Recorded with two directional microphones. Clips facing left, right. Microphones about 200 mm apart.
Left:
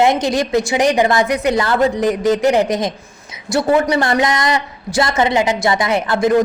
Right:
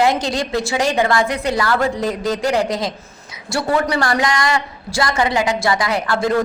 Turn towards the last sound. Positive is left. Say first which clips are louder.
# left 4 dB
turn(degrees=20)  # may be behind; listen again after turning